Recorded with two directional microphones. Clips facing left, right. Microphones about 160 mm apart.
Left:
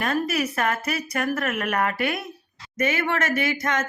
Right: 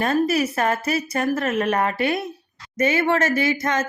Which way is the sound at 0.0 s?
30° right (ahead or behind).